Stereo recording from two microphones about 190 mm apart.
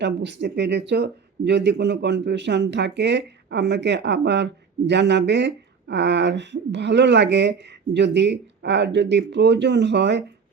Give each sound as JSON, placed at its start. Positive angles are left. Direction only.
{"t": 0.0, "sound": "speech", "side_deg": -70}